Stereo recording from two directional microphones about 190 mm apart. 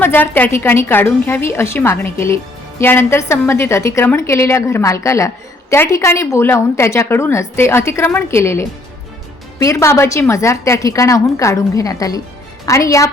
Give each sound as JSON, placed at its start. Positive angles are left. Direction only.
{"t": 0.0, "sound": "a woman's voice", "side_deg": 10}